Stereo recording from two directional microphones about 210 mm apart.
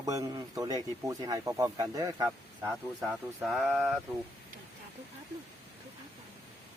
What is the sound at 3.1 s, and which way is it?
Speech, 5° right (ahead or behind).